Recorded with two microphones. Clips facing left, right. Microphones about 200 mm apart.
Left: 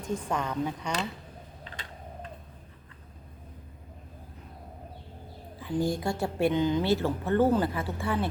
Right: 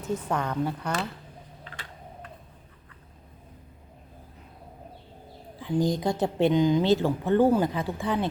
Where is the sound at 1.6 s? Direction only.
25° left (ahead or behind).